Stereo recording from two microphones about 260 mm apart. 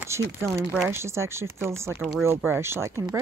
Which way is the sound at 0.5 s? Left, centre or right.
Centre.